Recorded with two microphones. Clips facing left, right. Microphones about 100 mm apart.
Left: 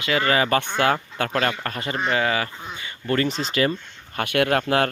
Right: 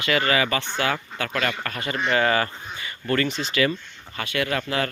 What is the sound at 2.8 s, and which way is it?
Speech, 25° left (ahead or behind).